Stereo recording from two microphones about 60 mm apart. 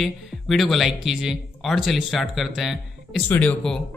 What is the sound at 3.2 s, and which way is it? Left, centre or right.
Speech, left.